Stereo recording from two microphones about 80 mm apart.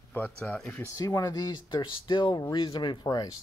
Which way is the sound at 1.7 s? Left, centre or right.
Left.